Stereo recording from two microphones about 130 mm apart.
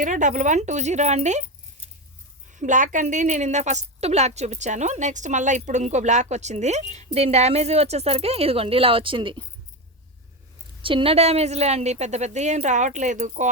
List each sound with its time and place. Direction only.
0.0 s a woman's voice: 75° right (ahead or behind)
2.5 s a woman's voice: 75° right (ahead or behind); by 9.5 s 40° right (ahead or behind)
10.8 s a woman's voice: 45° right (ahead or behind); by 13.5 s 70° right (ahead or behind)